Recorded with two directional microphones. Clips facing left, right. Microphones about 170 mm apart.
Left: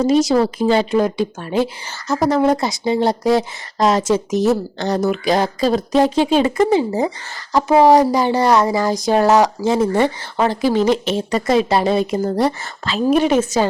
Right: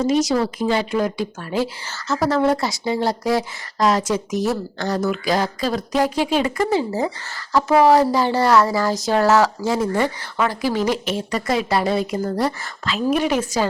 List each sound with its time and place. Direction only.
0.0 s speech: 30° left (ahead or behind)